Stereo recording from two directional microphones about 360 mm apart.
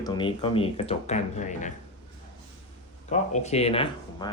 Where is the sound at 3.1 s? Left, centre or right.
Centre.